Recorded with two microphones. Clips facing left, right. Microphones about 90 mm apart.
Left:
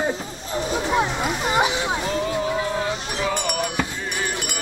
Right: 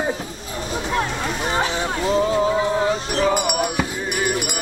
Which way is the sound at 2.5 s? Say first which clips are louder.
Right 5 dB; 25° right (ahead or behind).